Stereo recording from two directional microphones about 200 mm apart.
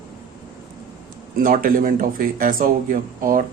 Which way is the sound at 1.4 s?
45° right (ahead or behind).